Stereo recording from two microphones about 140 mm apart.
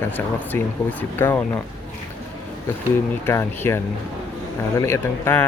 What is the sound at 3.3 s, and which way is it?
Speech, 15° left (ahead or behind).